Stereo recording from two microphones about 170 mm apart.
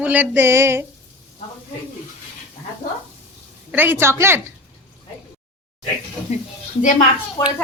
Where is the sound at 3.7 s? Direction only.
10° right (ahead or behind).